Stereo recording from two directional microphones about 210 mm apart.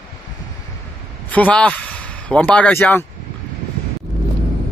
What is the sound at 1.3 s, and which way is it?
A man's voice, 5° left (ahead or behind).